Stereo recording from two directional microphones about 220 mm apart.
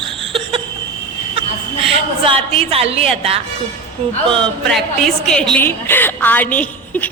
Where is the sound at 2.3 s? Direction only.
25° right (ahead or behind).